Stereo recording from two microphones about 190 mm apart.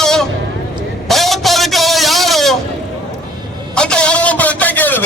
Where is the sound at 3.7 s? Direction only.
5° left (ahead or behind).